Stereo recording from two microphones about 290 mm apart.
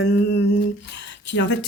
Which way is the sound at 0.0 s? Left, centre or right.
Left.